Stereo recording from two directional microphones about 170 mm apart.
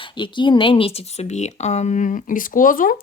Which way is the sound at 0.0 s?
30° left (ahead or behind).